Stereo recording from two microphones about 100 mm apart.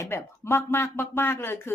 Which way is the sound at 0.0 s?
25° left (ahead or behind).